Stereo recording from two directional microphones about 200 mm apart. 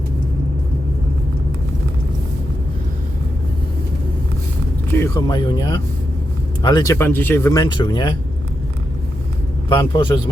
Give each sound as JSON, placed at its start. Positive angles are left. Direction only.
{"t": 4.9, "sound": "speech", "side_deg": 15}
{"t": 9.6, "sound": "speech", "side_deg": 25}